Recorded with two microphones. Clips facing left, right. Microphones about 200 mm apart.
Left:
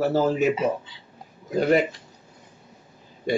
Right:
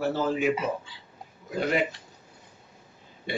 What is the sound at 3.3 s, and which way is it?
Speech, 40° left (ahead or behind).